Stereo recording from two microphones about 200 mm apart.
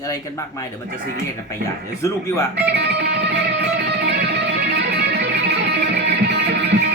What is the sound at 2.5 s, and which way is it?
Music, 55° right (ahead or behind).